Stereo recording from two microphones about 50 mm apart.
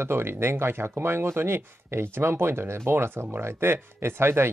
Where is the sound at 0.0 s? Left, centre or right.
Right.